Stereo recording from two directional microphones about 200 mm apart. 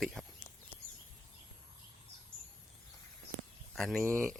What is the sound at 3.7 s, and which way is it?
Speech, centre (ahead or behind).